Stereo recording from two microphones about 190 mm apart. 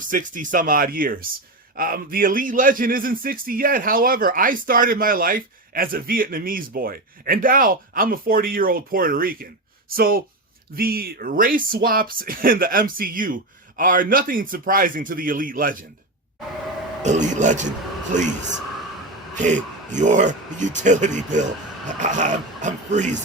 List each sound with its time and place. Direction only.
0.1 s speech: 45° right (ahead or behind)
17.0 s speech: 40° right (ahead or behind)
19.4 s speech: 40° right (ahead or behind)